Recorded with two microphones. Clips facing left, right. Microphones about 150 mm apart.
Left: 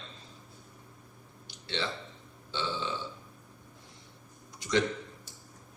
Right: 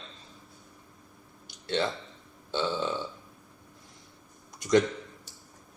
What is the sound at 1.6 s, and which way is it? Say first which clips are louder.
Speech: right 6 dB; 45° right (ahead or behind).